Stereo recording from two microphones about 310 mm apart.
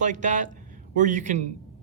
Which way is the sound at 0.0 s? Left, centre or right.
Right.